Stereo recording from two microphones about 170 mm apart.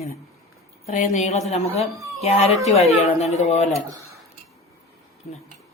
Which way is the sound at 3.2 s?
40° left (ahead or behind).